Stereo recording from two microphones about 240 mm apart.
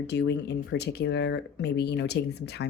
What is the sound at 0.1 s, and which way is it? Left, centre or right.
Speech, left.